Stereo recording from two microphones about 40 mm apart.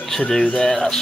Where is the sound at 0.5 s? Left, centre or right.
Centre.